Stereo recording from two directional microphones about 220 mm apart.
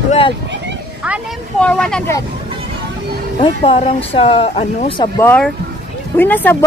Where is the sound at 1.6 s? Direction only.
5° left (ahead or behind).